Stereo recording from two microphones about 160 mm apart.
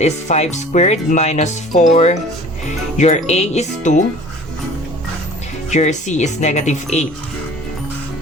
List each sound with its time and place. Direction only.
0.0 s speech: 45° left (ahead or behind)
5.7 s speech: 50° left (ahead or behind)